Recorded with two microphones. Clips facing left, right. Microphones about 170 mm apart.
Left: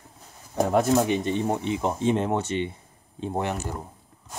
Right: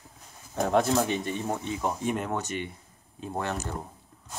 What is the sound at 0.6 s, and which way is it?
Speech, 10° left (ahead or behind).